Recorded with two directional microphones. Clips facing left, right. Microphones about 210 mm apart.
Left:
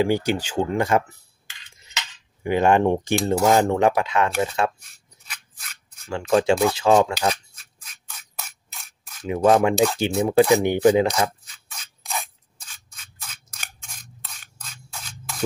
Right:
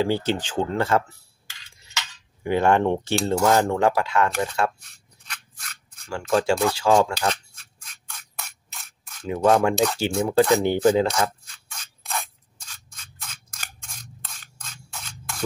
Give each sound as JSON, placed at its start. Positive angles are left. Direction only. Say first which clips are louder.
{"t": 0.0, "sound": "speech", "louder": "left 2 dB", "side_deg": 15}
{"t": 5.2, "sound": "a sound", "louder": "right 1 dB", "side_deg": 5}
{"t": 6.0, "sound": "speech", "louder": "left 3 dB", "side_deg": 20}
{"t": 7.5, "sound": "mechanisms", "louder": "even", "side_deg": 5}
{"t": 9.2, "sound": "speech", "louder": "left 2 dB", "side_deg": 20}
{"t": 11.4, "sound": "scrape", "louder": "even", "side_deg": 5}
{"t": 12.6, "sound": "scissors", "louder": "right 1 dB", "side_deg": 5}